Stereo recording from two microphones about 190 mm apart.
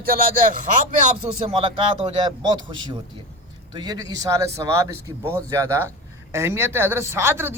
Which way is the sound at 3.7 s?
20° right (ahead or behind).